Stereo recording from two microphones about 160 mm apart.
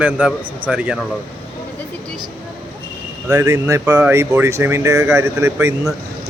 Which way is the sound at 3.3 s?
20° right (ahead or behind).